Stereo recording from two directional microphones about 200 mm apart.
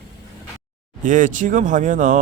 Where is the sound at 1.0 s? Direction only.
40° right (ahead or behind).